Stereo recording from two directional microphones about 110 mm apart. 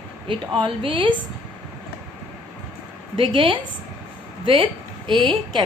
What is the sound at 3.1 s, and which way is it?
A woman's voice, 50° right (ahead or behind).